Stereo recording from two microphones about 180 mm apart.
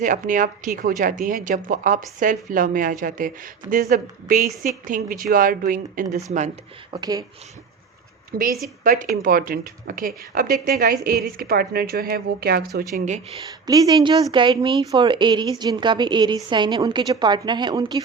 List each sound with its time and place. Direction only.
0.0 s a woman's voice: 50° right (ahead or behind)
6.9 s a woman's voice: 20° right (ahead or behind)
8.3 s a woman's voice: 55° right (ahead or behind)
13.7 s a woman's voice: 20° right (ahead or behind)